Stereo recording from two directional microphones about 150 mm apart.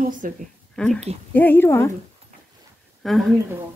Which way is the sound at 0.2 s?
65° right (ahead or behind).